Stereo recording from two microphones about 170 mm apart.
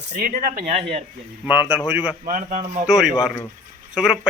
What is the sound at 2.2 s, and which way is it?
Speech, 50° right (ahead or behind).